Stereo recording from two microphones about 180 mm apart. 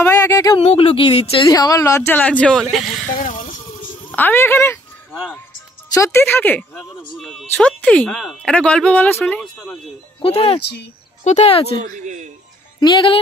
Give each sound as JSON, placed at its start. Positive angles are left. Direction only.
{"t": 0.0, "sound": "a sound", "side_deg": 15}
{"t": 0.6, "sound": "speech", "side_deg": 30}
{"t": 1.5, "sound": "speech", "side_deg": 20}
{"t": 3.1, "sound": "speech", "side_deg": 45}
{"t": 3.5, "sound": "a sound", "side_deg": 45}
{"t": 4.1, "sound": "speech", "side_deg": 10}
{"t": 5.9, "sound": "speech", "side_deg": 15}
{"t": 10.2, "sound": "speech", "side_deg": 35}
{"t": 11.8, "sound": "a man's voice", "side_deg": -45}
{"t": 12.8, "sound": "speech", "side_deg": 30}